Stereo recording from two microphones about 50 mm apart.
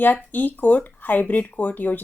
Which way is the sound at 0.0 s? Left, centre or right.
Left.